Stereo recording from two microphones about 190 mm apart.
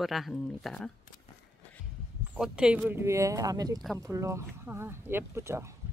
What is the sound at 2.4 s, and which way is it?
Speech, 5° right (ahead or behind).